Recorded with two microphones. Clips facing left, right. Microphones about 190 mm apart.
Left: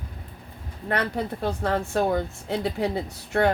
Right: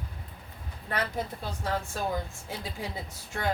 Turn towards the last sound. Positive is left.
turn(degrees=65)  # may be behind; listen again after turning